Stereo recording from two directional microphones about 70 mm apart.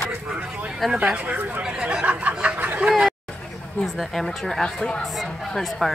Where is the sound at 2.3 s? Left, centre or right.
Centre.